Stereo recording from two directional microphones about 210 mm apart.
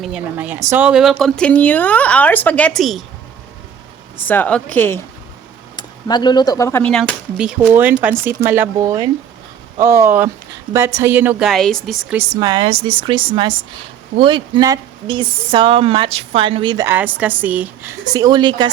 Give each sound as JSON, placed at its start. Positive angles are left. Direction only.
{"t": 0.0, "sound": "speech", "side_deg": -5}
{"t": 4.3, "sound": "a woman's voice", "side_deg": 10}
{"t": 5.7, "sound": "speech", "side_deg": 20}
{"t": 7.3, "sound": "speech", "side_deg": -5}
{"t": 12.1, "sound": "speech", "side_deg": -15}
{"t": 18.1, "sound": "speech", "side_deg": -20}